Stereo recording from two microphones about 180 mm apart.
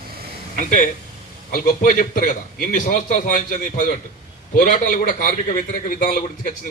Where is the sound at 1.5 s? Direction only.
50° left (ahead or behind).